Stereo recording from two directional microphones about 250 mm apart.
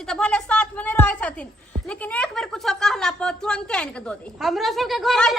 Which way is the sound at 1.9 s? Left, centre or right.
Centre.